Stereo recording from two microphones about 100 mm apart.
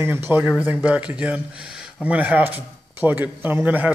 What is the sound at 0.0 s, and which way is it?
A man's voice, 20° right (ahead or behind).